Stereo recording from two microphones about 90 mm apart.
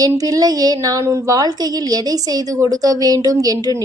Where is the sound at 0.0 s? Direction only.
40° right (ahead or behind).